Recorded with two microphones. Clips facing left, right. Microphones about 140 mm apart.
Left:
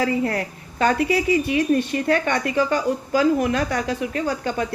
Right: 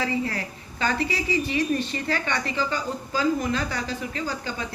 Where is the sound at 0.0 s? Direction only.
55° left (ahead or behind).